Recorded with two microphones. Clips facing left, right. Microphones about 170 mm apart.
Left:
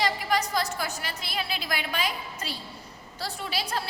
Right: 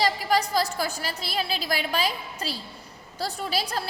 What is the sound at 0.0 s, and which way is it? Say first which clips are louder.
A woman's voice: right 3 dB; 35° right (ahead or behind).